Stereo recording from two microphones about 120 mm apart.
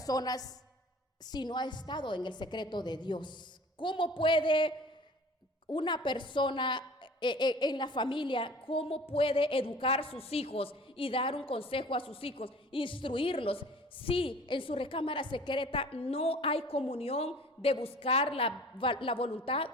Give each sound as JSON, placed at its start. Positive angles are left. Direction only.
{"t": 0.0, "sound": "a woman's voice", "side_deg": 30}
{"t": 5.7, "sound": "a woman's voice", "side_deg": 40}